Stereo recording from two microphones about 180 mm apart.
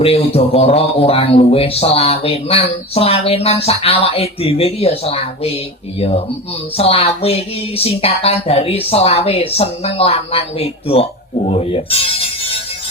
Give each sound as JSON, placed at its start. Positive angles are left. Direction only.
{"t": 0.0, "sound": "a man's voice", "side_deg": 35}